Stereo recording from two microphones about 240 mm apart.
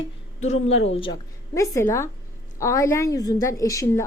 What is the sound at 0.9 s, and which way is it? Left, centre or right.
A woman's voice, centre.